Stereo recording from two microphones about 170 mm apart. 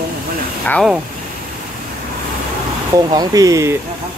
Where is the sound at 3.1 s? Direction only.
20° right (ahead or behind).